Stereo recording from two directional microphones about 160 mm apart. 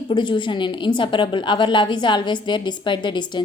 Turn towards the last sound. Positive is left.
turn(degrees=30)  # may be behind; listen again after turning